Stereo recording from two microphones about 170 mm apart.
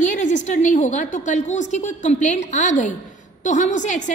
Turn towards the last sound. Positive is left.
turn(degrees=45)  # may be behind; listen again after turning